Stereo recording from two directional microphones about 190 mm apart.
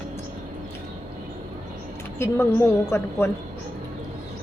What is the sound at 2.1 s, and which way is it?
Speech, 15° left (ahead or behind).